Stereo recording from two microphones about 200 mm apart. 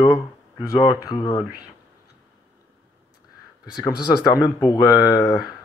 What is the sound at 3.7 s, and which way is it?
Speech, 20° left (ahead or behind).